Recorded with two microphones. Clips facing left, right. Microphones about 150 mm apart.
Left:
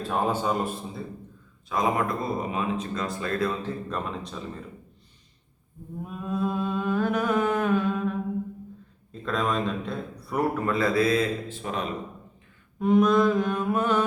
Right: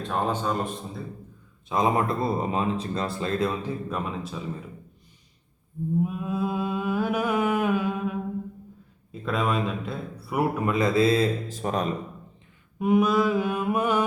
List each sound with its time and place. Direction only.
0.1 s a man's voice: 10° left (ahead or behind)
1.7 s speech: 25° right (ahead or behind); by 4.4 s 5° right (ahead or behind)
6.0 s mantra: 5° right (ahead or behind)
9.2 s a man's voice: 5° right (ahead or behind); by 11.9 s 40° right (ahead or behind)
12.8 s a man's voice: 5° right (ahead or behind)